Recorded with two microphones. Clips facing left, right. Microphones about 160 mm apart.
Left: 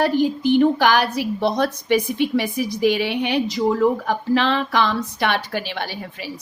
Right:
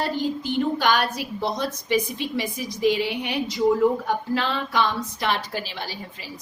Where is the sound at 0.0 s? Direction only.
80° left.